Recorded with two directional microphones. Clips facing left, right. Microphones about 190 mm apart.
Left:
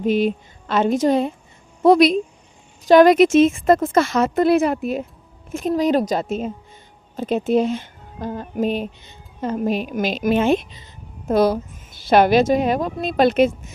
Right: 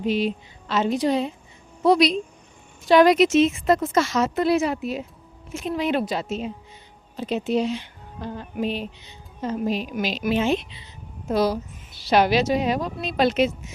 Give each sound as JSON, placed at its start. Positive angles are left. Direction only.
{"t": 0.0, "sound": "speech", "side_deg": 50}